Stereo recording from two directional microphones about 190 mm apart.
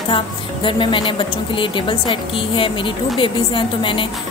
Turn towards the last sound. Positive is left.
turn(degrees=25)  # may be behind; listen again after turning